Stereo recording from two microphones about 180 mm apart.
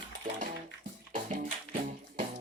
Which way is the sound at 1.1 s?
40° right (ahead or behind).